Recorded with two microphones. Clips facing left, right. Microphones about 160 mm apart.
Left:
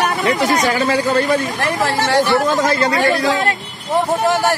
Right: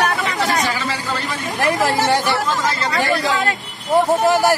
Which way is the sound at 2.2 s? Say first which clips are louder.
Left 5 dB; 45° left (ahead or behind).